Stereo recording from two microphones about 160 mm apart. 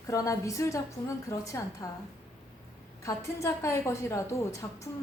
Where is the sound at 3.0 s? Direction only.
20° left (ahead or behind).